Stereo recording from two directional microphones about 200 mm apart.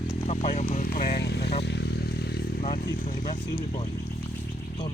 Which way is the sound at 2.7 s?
45° left (ahead or behind).